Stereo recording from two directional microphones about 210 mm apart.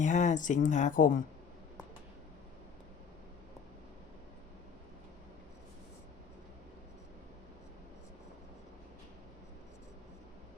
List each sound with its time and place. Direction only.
0.0 s speech: 35° left (ahead or behind)